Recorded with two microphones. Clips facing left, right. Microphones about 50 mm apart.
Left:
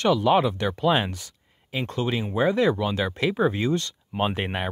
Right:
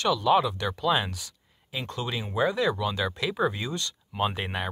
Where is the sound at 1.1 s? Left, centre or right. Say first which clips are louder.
Left 1 dB; left.